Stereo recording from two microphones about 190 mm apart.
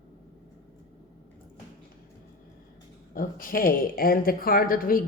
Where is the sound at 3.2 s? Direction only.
50° left (ahead or behind).